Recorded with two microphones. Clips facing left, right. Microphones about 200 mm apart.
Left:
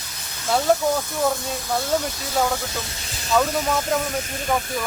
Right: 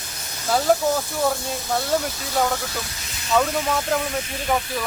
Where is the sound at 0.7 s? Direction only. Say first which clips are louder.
Even; 5° right (ahead or behind).